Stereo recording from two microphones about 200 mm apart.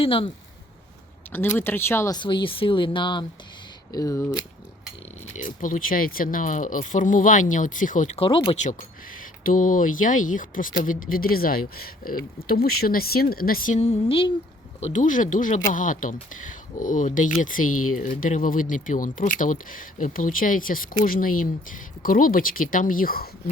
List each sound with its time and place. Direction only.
0.0 s speech: 25° left (ahead or behind)
1.3 s speech: 10° left (ahead or behind)
5.4 s speech: 40° left (ahead or behind); by 8.5 s 25° left (ahead or behind)
9.4 s speech: 40° left (ahead or behind)